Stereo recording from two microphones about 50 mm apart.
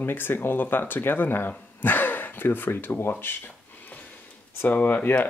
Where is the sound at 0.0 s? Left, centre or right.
Left.